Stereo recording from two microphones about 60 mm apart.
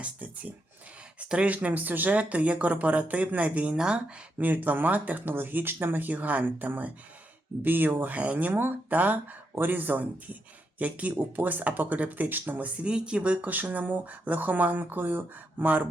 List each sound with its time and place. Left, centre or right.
0.0 s speech: right
4.4 s speech: right